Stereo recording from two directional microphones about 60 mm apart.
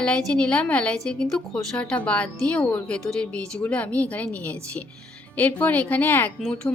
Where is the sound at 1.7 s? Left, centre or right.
Centre.